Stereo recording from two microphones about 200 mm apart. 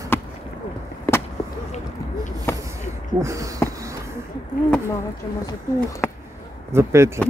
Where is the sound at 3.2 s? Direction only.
15° right (ahead or behind).